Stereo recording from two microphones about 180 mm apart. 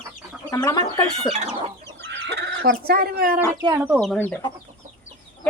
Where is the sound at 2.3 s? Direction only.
70° right (ahead or behind).